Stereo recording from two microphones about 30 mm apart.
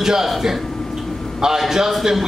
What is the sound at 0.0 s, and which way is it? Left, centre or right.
Speech, centre.